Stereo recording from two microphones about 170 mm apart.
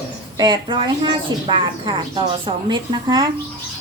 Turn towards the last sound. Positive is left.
turn(degrees=-25)  # may be behind; listen again after turning